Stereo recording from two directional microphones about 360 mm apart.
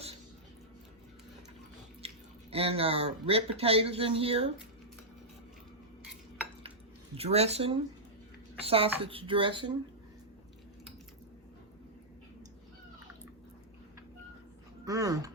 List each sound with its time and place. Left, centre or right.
2.0 s speech: centre
7.2 s speech: centre
14.8 s speech: centre